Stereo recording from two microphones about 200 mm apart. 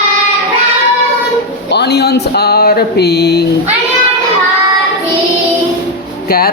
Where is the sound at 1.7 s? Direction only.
55° left (ahead or behind).